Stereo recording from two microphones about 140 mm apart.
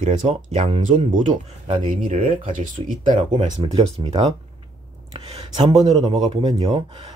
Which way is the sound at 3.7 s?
45° right (ahead or behind).